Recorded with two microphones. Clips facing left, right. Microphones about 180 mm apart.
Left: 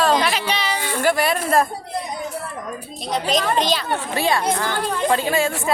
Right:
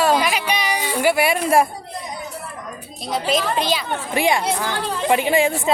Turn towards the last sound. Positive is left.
turn(degrees=-20)  # may be behind; listen again after turning